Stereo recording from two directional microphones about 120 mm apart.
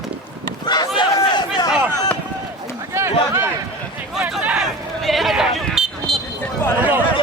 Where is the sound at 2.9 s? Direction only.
20° right (ahead or behind).